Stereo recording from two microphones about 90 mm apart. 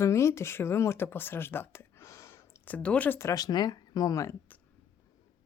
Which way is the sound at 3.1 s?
35° left (ahead or behind).